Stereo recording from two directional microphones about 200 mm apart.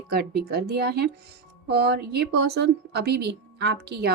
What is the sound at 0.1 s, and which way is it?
A woman's voice, 50° right (ahead or behind).